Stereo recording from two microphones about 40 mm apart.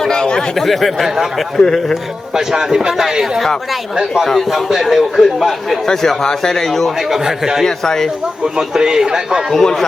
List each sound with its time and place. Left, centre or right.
0.0 s chatter: centre
0.5 s a man's voice: centre
1.5 s speech: centre
2.3 s a man's voice: centre
4.4 s a man's voice: centre
5.8 s speech: centre
7.1 s a man's voice: centre
7.9 s speech: centre
8.5 s a man's voice: centre
9.5 s speech: centre